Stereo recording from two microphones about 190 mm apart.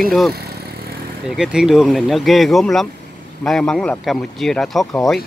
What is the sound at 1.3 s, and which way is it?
Speech, 5° right (ahead or behind).